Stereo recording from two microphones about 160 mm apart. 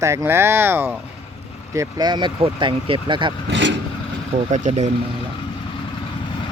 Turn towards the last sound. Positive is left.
turn(degrees=-45)  # may be behind; listen again after turning